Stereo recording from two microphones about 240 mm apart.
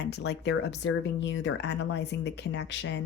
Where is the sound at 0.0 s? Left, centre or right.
Left.